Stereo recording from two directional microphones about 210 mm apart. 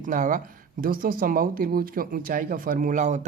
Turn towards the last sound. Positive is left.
turn(degrees=-35)  # may be behind; listen again after turning